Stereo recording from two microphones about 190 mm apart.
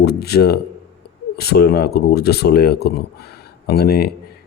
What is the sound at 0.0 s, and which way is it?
Speech, 55° left (ahead or behind).